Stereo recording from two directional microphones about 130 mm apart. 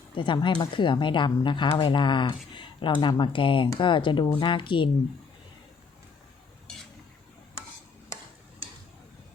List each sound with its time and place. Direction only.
0.1 s a woman's voice: 40° left (ahead or behind)